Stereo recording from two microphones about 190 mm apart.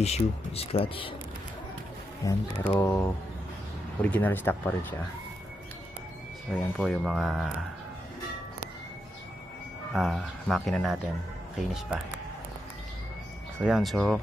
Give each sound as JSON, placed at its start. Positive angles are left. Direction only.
{"t": 0.0, "sound": "speech", "side_deg": 35}
{"t": 2.2, "sound": "speech", "side_deg": 10}
{"t": 6.8, "sound": "speech", "side_deg": 0}
{"t": 9.9, "sound": "speech", "side_deg": 0}
{"t": 13.6, "sound": "speech", "side_deg": 0}